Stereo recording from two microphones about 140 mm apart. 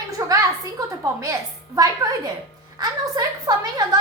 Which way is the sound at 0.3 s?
25° right (ahead or behind).